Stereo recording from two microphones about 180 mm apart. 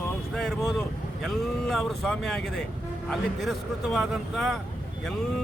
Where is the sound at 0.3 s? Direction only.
Centre (ahead or behind).